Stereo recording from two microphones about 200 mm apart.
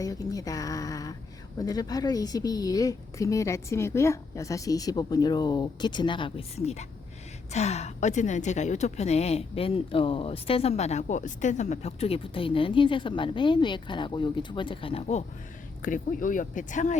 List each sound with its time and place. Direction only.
0.0 s a sound: 15° left (ahead or behind)
1.5 s a woman's voice: 20° left (ahead or behind)
15.8 s speech: 40° left (ahead or behind)